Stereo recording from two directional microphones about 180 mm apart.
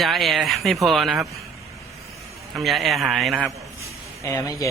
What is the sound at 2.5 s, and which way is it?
A man's voice, centre (ahead or behind).